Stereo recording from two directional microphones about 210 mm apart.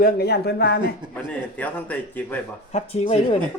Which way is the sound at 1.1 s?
5° left (ahead or behind).